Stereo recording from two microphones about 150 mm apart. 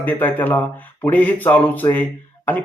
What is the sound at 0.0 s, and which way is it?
Speech, 10° left (ahead or behind).